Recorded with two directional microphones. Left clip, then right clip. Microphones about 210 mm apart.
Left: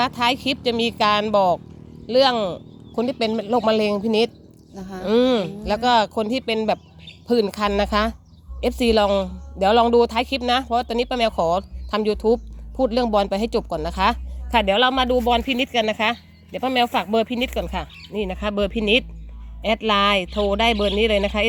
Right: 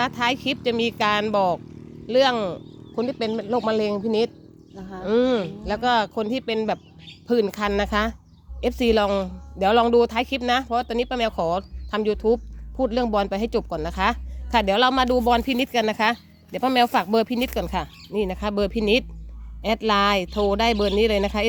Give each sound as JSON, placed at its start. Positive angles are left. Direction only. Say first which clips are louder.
{"t": 0.0, "sound": "speech", "louder": "left 3 dB", "side_deg": 5}
{"t": 2.9, "sound": "speech", "louder": "left 3 dB", "side_deg": 15}
{"t": 4.7, "sound": "speech", "louder": "left 3 dB", "side_deg": 45}
{"t": 5.0, "sound": "speech", "louder": "left 2 dB", "side_deg": 15}